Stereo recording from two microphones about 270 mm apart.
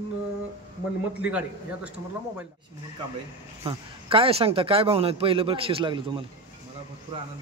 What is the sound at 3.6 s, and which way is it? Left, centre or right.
A man's voice, centre.